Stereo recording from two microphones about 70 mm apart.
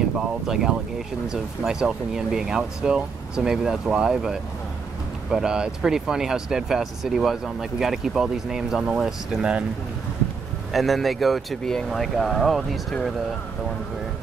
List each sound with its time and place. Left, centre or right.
0.5 s speech: centre
10.7 s speech: centre